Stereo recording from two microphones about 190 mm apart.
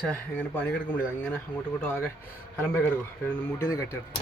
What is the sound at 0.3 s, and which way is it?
A man's voice, 10° left (ahead or behind).